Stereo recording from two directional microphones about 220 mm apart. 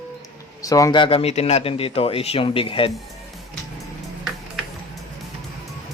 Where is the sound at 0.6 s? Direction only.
15° left (ahead or behind).